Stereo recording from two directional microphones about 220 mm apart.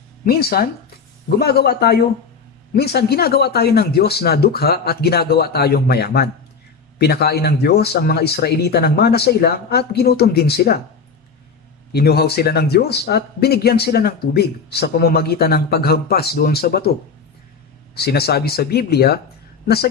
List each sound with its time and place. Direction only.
0.3 s speech: 45° left (ahead or behind)
11.9 s speech: 45° left (ahead or behind)
17.9 s speech: 45° left (ahead or behind)